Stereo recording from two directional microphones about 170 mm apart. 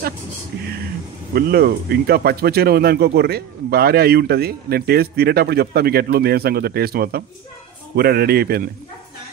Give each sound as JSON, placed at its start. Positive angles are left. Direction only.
{"t": 1.3, "sound": "speech", "side_deg": -70}